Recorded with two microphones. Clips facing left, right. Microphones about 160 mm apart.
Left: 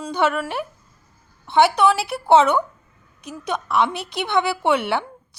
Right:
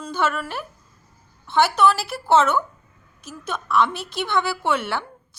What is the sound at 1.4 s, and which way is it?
Speech, 65° left (ahead or behind).